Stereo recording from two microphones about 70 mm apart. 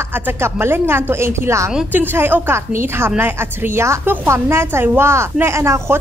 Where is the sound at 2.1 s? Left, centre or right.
Right.